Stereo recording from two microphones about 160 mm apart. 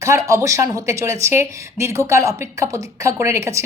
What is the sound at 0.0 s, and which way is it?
A woman's voice, 20° right (ahead or behind).